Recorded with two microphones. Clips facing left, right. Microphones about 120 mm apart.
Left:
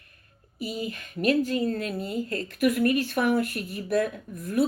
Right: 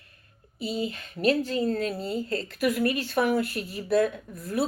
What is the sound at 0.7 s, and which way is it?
Speech, 30° right (ahead or behind).